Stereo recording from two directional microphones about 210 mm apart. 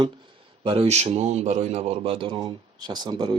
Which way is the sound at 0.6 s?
25° right (ahead or behind).